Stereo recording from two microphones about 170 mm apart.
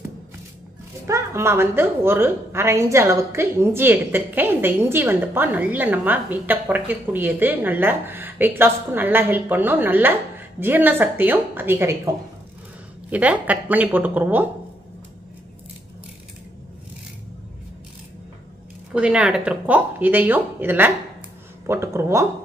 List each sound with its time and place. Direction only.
1.0 s a woman's voice: 15° right (ahead or behind)
13.1 s a woman's voice: 10° right (ahead or behind)
18.9 s a woman's voice: 5° right (ahead or behind)